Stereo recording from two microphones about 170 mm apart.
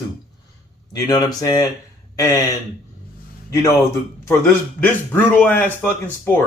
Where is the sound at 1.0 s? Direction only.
20° left (ahead or behind).